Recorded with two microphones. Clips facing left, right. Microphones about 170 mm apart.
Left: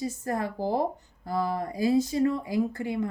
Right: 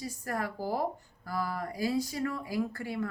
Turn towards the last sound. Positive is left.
turn(degrees=20)  # may be behind; listen again after turning